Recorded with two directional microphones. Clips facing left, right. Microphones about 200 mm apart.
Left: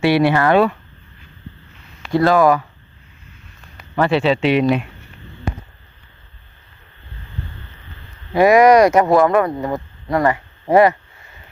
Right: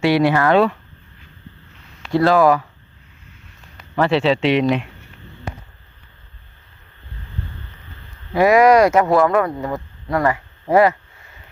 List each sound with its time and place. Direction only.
0.2 s speech: 15° left (ahead or behind)
2.0 s speech: centre (ahead or behind)
3.8 s speech: centre (ahead or behind)
8.3 s speech: 20° left (ahead or behind)